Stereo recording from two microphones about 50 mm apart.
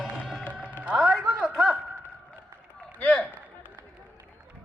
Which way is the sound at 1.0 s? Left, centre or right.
Centre.